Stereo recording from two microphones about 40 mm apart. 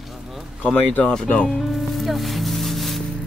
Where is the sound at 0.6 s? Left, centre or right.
Left.